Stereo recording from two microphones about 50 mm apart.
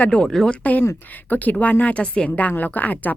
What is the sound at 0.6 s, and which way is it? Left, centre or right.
A woman's voice, left.